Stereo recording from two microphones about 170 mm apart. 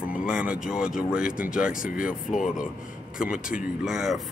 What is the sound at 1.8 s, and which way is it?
Speech, 55° left (ahead or behind).